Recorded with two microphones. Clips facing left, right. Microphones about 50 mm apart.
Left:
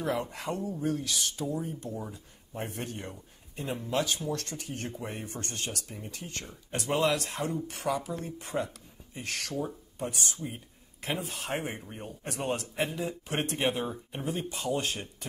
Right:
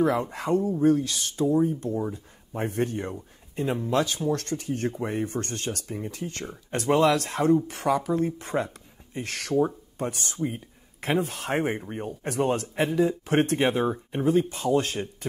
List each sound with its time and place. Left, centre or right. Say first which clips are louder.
0.3 s speech: right 9 dB; right